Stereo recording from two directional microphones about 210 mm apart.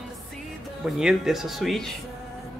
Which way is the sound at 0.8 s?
Centre (ahead or behind).